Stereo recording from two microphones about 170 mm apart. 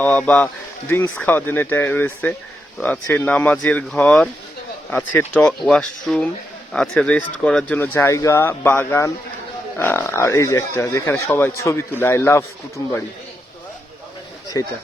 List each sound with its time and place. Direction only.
0.0 s speech: 10° left (ahead or behind)
14.5 s speech: 20° left (ahead or behind)